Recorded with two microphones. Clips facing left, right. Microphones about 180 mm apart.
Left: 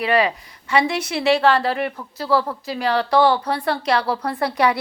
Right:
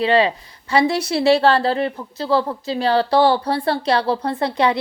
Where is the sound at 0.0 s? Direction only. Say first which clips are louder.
Right 3 dB; 25° right (ahead or behind).